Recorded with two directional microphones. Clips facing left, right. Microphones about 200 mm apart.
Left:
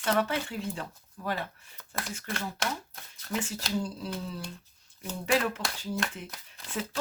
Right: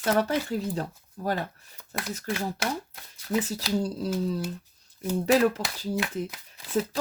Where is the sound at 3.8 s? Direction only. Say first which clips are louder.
Right 6 dB; 40° right (ahead or behind).